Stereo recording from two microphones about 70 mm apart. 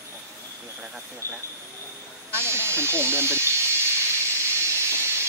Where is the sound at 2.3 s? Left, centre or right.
Right.